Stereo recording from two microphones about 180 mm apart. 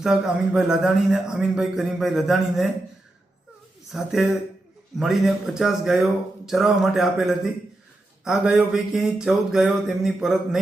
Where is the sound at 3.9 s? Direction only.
Centre (ahead or behind).